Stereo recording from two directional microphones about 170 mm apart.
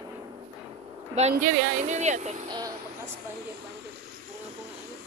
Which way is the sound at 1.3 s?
45° right (ahead or behind).